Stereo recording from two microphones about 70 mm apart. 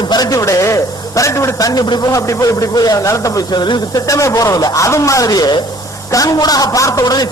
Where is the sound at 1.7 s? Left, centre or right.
Left.